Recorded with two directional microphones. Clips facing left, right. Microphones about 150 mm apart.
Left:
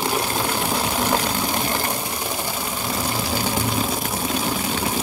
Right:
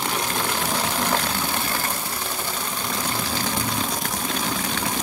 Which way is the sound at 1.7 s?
15° left (ahead or behind).